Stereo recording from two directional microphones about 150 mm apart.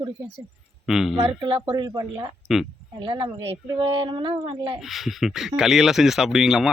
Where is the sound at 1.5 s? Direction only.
35° right (ahead or behind).